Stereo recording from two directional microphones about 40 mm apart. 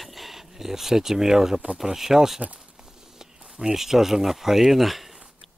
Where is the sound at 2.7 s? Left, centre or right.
Centre.